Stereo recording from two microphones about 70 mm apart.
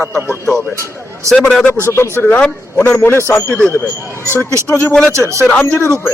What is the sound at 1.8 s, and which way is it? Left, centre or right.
Speech, left.